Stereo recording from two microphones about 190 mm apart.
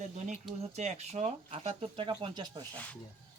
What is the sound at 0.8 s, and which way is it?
Speech, 35° right (ahead or behind).